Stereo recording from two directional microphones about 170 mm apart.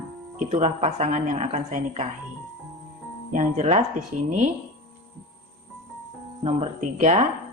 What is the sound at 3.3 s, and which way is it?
A woman's voice, 45° right (ahead or behind).